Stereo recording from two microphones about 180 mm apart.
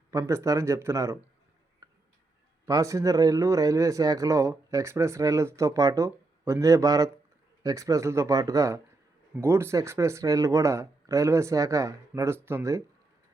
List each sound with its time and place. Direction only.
0.1 s speech: 15° right (ahead or behind)
1.8 s tick-tock: 20° right (ahead or behind)
2.6 s speech: 20° right (ahead or behind)